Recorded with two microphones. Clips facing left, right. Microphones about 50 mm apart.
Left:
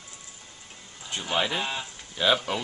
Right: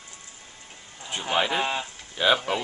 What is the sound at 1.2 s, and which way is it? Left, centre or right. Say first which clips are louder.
Speech: right 3 dB; centre.